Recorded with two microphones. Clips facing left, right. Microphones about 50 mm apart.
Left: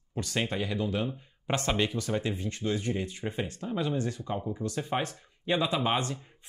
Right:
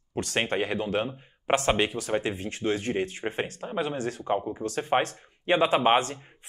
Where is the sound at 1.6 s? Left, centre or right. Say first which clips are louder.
Right 4 dB; right.